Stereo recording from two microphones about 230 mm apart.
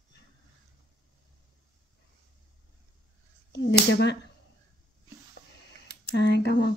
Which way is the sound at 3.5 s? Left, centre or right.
Left.